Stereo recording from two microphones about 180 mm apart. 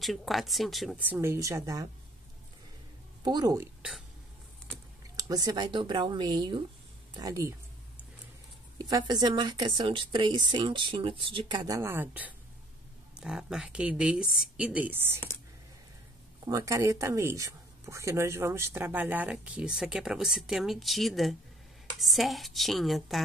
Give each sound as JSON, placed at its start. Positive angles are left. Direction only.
{"t": 0.0, "sound": "a woman's voice", "side_deg": 0}
{"t": 1.0, "sound": "speech", "side_deg": -10}
{"t": 3.3, "sound": "a woman's voice", "side_deg": -20}
{"t": 5.1, "sound": "a woman's voice", "side_deg": -20}
{"t": 8.7, "sound": "a woman's voice", "side_deg": -20}
{"t": 16.4, "sound": "a woman's voice", "side_deg": -15}